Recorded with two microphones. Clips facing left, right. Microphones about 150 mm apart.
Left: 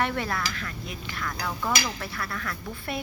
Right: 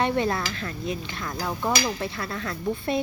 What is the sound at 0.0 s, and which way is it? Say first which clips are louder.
Speech: right 4 dB; 25° right (ahead or behind).